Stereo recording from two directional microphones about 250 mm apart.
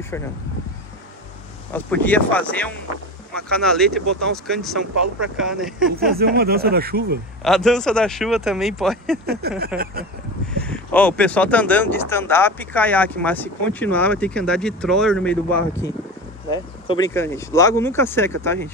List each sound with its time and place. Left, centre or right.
1.7 s speech: centre
6.1 s speech: right
7.4 s speech: centre
9.2 s speech: right
9.7 s speech: centre
10.6 s speech: centre
16.4 s speech: centre